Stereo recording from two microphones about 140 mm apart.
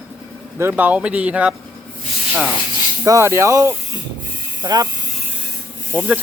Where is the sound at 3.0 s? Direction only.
20° right (ahead or behind).